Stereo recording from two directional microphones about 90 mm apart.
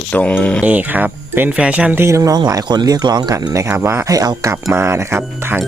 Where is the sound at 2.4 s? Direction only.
50° right (ahead or behind).